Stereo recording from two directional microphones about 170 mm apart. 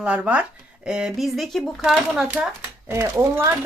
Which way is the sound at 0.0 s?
5° right (ahead or behind).